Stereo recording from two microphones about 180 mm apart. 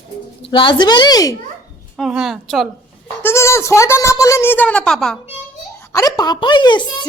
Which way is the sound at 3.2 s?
15° left (ahead or behind).